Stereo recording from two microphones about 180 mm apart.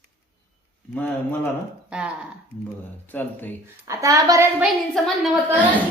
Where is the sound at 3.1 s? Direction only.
10° left (ahead or behind).